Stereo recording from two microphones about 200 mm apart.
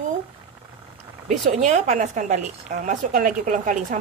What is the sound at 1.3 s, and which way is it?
A woman's voice, 35° right (ahead or behind).